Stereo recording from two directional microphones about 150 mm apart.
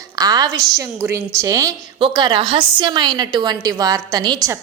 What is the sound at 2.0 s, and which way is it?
A woman's voice, 35° right (ahead or behind).